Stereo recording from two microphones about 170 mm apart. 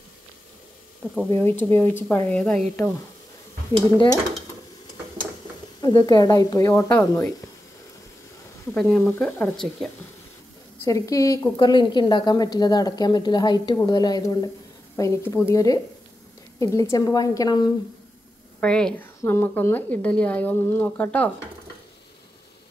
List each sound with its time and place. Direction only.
1.3 s a woman's voice: 10° left (ahead or behind)
5.8 s a woman's voice: 25° left (ahead or behind)
8.7 s speech: 5° left (ahead or behind)
10.9 s a woman's voice: 20° left (ahead or behind)
18.6 s a woman's voice: 5° left (ahead or behind)